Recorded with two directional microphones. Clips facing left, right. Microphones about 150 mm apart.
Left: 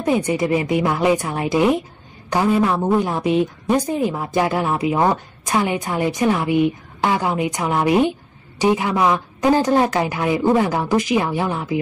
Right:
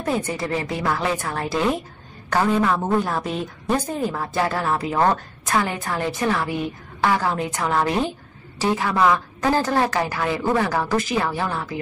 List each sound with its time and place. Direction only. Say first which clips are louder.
0.0 s a woman's voice: left 6 dB; 15° left (ahead or behind)